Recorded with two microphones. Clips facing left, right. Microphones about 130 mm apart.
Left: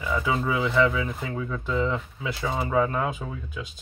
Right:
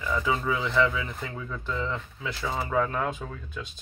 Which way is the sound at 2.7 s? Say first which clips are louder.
Left 3 dB; 5° left (ahead or behind).